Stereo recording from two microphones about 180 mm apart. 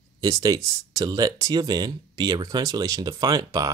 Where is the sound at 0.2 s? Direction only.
20° right (ahead or behind).